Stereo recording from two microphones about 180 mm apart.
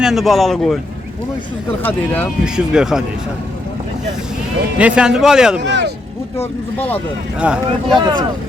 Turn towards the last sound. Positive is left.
turn(degrees=-5)  # may be behind; listen again after turning